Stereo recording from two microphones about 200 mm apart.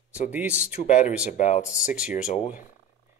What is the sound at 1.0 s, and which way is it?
Speech, 35° left (ahead or behind).